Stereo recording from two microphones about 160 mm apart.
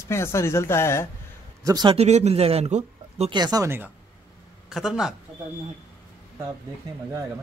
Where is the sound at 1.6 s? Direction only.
25° right (ahead or behind).